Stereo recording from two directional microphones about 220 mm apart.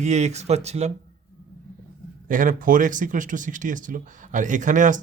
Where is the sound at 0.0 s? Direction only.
30° right (ahead or behind).